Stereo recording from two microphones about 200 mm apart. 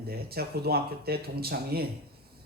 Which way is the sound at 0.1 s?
50° right (ahead or behind).